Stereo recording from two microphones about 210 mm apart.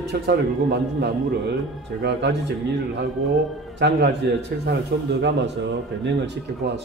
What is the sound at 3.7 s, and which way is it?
Speech, 55° right (ahead or behind).